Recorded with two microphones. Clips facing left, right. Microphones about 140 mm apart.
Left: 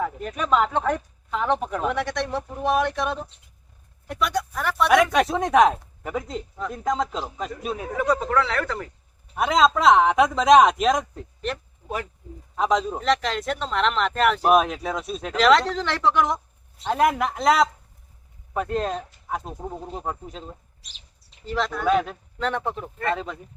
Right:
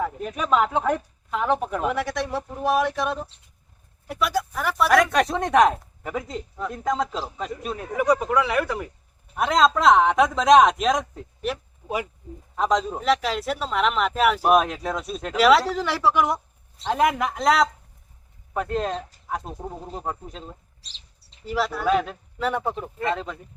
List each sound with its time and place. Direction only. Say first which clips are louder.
0.0 s a man's voice: even; 5° right (ahead or behind)
7.9 s speech: right 2 dB; 10° right (ahead or behind)
9.3 s a man's voice: even; centre (ahead or behind)
12.5 s a man's voice: even; centre (ahead or behind)
16.8 s a man's voice: left 1 dB; centre (ahead or behind)
20.8 s bird: even; 30° right (ahead or behind)
21.4 s speech: even; 5° right (ahead or behind)
23.1 s a man's voice: left 1 dB; centre (ahead or behind)